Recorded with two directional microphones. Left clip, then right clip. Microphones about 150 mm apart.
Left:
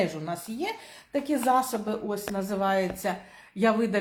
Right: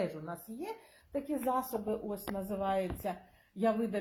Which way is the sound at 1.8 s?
10° right (ahead or behind).